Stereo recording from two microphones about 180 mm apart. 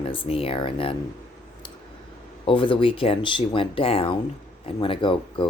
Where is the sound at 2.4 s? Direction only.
30° left (ahead or behind).